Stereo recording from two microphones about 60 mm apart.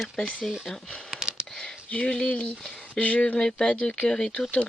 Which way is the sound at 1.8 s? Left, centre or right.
Centre.